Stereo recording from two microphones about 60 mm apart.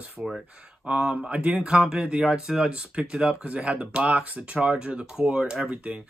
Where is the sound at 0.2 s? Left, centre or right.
Centre.